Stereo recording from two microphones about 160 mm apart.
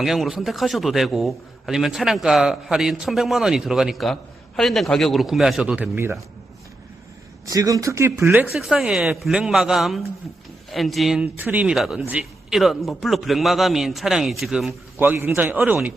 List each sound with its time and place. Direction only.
0.0 s a man's voice: centre (ahead or behind)
7.4 s speech: 20° right (ahead or behind)
8.5 s a man's voice: 5° right (ahead or behind)
14.9 s a man's voice: 15° right (ahead or behind)